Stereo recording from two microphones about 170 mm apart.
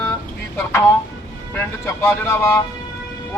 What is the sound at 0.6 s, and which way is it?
Speech, 15° left (ahead or behind).